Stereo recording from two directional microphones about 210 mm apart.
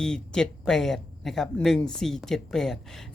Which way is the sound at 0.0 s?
5° left (ahead or behind).